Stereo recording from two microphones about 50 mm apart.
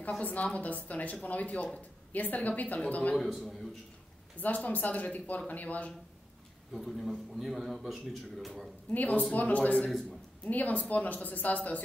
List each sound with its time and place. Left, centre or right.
0.2 s a man's voice: left
3.2 s a man's voice: centre
4.4 s speech: left
6.7 s a man's voice: centre
8.9 s speech: left